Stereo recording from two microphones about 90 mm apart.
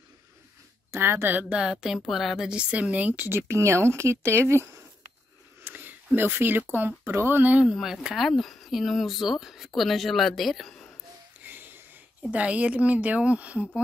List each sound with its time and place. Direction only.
0.9 s a woman's voice: 25° right (ahead or behind)
1.5 s a woman's voice: 10° right (ahead or behind); by 4.6 s 30° right (ahead or behind)
5.6 s a sound: 25° right (ahead or behind)
6.1 s a woman's voice: 25° right (ahead or behind)
7.6 s speech: 5° right (ahead or behind)
11.4 s wheeze: 20° right (ahead or behind)
12.2 s a woman's voice: 15° right (ahead or behind)